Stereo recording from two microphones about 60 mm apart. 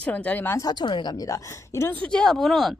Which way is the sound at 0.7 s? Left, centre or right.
Left.